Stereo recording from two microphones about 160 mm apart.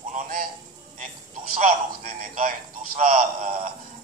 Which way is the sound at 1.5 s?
55° right (ahead or behind).